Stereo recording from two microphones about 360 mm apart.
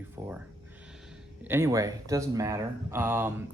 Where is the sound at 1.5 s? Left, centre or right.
Centre.